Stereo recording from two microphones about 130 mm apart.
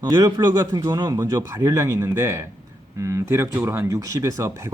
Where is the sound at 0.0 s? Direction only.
30° right (ahead or behind).